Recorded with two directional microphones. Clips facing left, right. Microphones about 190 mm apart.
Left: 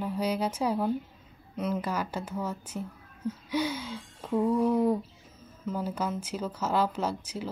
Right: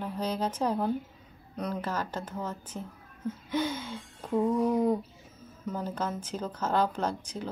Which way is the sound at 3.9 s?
5° right (ahead or behind).